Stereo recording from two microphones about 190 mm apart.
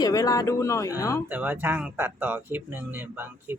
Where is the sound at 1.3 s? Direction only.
10° right (ahead or behind).